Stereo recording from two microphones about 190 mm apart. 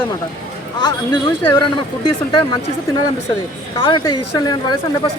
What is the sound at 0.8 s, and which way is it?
Speech, 20° left (ahead or behind).